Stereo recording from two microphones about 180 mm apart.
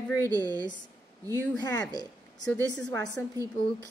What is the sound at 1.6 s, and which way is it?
A woman's voice, 20° left (ahead or behind).